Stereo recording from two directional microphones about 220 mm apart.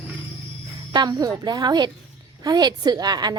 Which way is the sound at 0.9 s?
20° right (ahead or behind).